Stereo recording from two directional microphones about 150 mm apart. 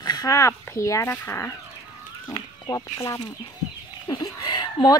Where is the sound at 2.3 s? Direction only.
30° left (ahead or behind).